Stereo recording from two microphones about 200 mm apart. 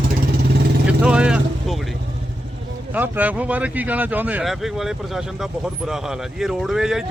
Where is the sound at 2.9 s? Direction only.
10° right (ahead or behind).